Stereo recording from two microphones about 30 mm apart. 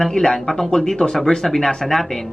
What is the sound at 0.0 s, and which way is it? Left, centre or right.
Speech, centre.